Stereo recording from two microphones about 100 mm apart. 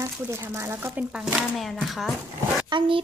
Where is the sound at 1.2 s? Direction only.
Centre (ahead or behind).